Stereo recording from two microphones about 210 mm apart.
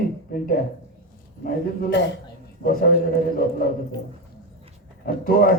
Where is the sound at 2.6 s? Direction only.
45° left (ahead or behind).